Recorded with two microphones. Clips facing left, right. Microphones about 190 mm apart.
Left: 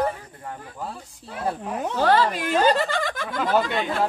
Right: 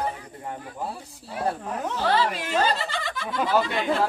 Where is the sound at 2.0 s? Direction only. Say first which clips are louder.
Left 5 dB; 50° left (ahead or behind).